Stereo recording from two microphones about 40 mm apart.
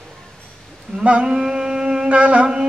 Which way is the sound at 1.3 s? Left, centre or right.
Centre.